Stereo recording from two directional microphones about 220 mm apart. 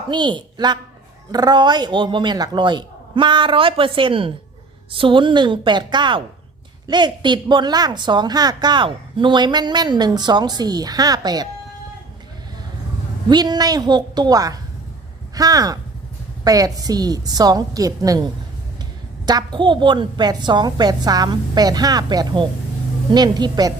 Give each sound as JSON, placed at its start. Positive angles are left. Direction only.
{"t": 0.1, "sound": "a woman's voice", "side_deg": -20}
{"t": 13.2, "sound": "a woman's voice", "side_deg": -20}